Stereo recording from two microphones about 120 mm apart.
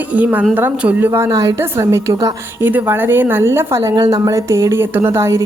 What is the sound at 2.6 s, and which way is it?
A woman's voice, 15° right (ahead or behind).